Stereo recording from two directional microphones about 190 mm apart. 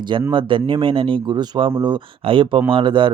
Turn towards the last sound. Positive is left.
turn(degrees=-25)  # may be behind; listen again after turning